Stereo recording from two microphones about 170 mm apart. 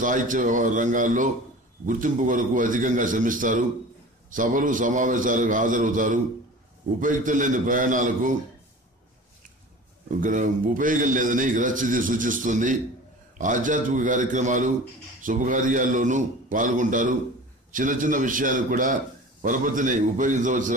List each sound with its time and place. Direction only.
0.0 s a man's voice: 50° right (ahead or behind)
10.2 s a man's voice: 50° right (ahead or behind)